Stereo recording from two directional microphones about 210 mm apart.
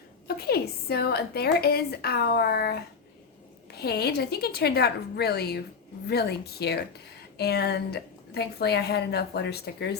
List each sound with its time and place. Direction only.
0.3 s a woman's voice: 50° left (ahead or behind)